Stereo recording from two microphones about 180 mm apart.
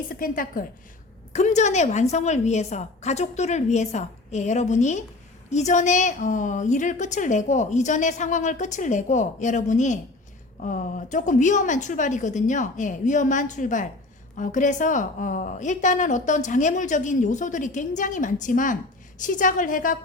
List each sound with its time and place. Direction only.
0.1 s a woman's voice: 50° left (ahead or behind)